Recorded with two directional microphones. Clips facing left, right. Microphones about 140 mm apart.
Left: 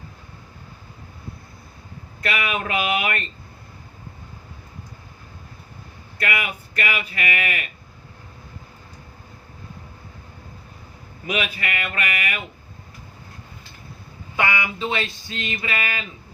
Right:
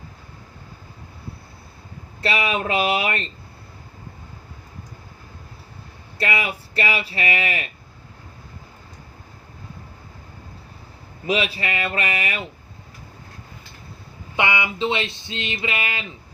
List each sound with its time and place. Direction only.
2.2 s speech: 30° right (ahead or behind)
6.1 s speech: 30° right (ahead or behind)
11.3 s speech: 30° right (ahead or behind)
14.3 s speech: 20° right (ahead or behind)